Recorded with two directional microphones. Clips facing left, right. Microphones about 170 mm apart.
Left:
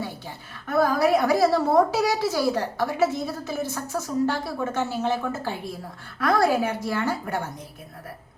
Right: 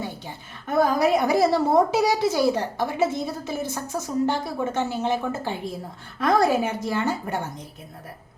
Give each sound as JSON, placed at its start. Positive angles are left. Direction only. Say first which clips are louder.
{"t": 0.7, "sound": "a woman's voice", "louder": "even", "side_deg": -20}